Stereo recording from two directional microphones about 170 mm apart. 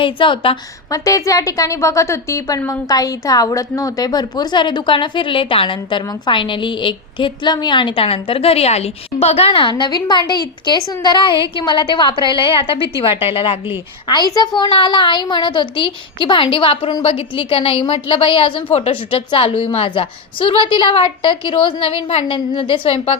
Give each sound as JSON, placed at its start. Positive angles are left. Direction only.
{"t": 0.0, "sound": "a woman's voice", "side_deg": 30}